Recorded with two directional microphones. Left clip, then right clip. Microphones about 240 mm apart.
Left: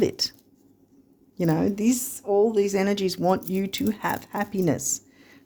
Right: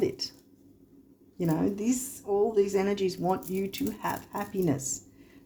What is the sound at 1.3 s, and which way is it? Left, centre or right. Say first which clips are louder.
Speech: left 5 dB; left.